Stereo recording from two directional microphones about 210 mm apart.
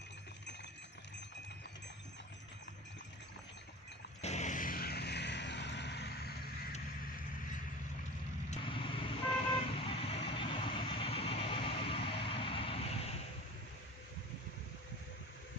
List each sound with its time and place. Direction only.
4.2 s vehicle: 30° left (ahead or behind); by 6.5 s 50° left (ahead or behind)
8.4 s vehicle: 25° left (ahead or behind)